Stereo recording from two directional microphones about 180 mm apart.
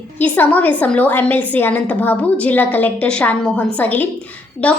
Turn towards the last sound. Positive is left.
turn(degrees=5)  # may be behind; listen again after turning